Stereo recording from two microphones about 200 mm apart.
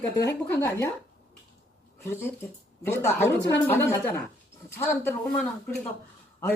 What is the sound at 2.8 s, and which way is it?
A man's voice, 10° left (ahead or behind).